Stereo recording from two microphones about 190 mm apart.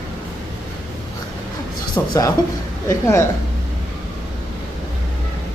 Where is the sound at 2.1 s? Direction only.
20° left (ahead or behind).